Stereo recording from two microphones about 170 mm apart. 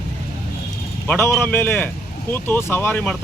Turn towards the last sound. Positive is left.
turn(degrees=10)  # may be behind; listen again after turning